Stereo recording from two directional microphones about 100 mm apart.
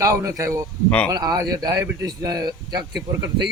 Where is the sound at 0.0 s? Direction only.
35° right (ahead or behind).